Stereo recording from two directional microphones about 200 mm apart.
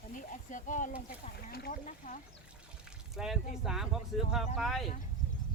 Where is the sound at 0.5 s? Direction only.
40° left (ahead or behind).